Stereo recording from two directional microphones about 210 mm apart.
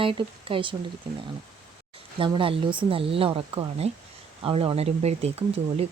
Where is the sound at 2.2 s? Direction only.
25° right (ahead or behind).